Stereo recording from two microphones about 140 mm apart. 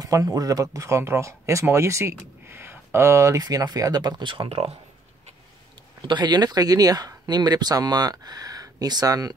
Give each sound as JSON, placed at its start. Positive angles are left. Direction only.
{"t": 0.0, "sound": "speech", "side_deg": -25}
{"t": 6.0, "sound": "speech", "side_deg": -30}